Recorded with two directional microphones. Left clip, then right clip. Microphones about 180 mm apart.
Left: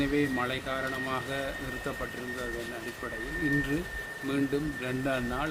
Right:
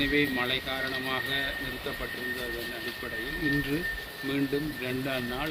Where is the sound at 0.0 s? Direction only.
15° left (ahead or behind).